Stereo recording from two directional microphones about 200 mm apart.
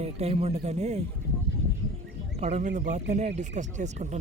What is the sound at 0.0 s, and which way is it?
Speech, 30° right (ahead or behind).